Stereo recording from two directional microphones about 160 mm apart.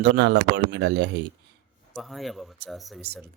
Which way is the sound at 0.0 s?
90° right.